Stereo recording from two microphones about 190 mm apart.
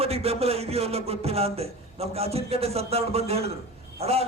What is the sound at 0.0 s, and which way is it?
A man's voice, 30° right (ahead or behind).